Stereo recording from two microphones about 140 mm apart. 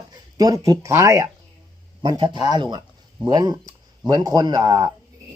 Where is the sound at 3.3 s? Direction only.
30° right (ahead or behind).